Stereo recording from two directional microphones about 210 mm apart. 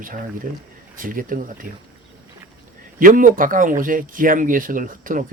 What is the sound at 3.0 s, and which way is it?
Speech, 40° right (ahead or behind).